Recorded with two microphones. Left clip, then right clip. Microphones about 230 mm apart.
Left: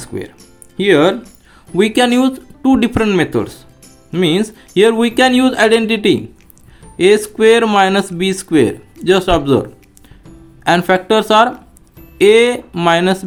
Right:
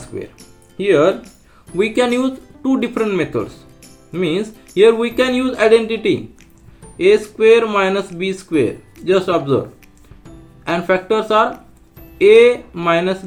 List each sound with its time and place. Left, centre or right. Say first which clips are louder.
0.8 s speech: left 2 dB; left
10.6 s speech: left 5 dB; left